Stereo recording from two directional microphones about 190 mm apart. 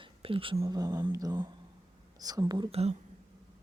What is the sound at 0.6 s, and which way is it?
Speech, 20° right (ahead or behind).